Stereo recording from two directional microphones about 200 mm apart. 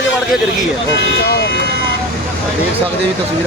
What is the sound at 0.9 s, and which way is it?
Speech, 55° left (ahead or behind).